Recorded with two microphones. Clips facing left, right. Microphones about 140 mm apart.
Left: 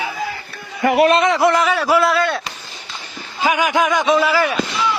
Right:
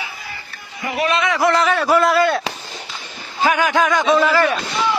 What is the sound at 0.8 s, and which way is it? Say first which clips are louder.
Speech: left 9 dB; 60° left (ahead or behind).